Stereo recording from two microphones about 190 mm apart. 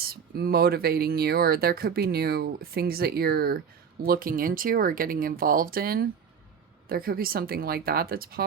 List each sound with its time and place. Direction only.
0.0 s speech: 50° right (ahead or behind)